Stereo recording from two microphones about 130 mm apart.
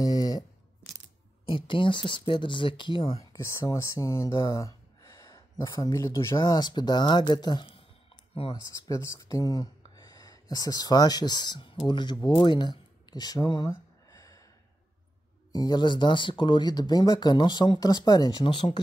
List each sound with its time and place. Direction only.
0.0 s a sound: 30° left (ahead or behind)
1.4 s speech: 40° left (ahead or behind)
3.3 s speech: 20° left (ahead or behind)
15.5 s speech: 35° left (ahead or behind)